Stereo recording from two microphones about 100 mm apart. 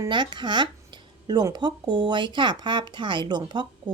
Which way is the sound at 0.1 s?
50° right (ahead or behind).